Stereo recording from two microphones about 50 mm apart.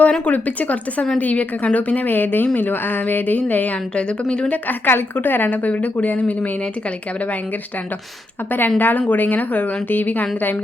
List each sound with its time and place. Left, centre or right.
0.0 s a woman's voice: left
3.9 s speech: centre
4.5 s a woman's voice: left
8.4 s a woman's voice: left